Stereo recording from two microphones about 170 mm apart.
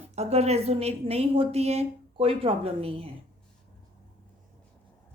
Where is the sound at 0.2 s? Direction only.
40° right (ahead or behind).